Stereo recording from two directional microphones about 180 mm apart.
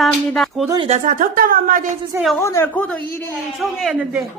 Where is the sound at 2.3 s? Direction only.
15° left (ahead or behind).